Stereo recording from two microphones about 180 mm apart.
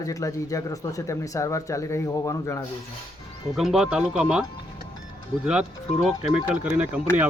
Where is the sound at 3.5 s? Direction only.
Centre (ahead or behind).